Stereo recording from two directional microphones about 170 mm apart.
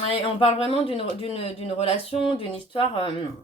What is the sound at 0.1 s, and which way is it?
Speech, 35° left (ahead or behind).